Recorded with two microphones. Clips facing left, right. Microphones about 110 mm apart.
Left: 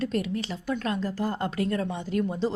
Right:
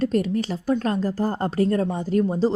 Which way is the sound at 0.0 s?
40° right (ahead or behind).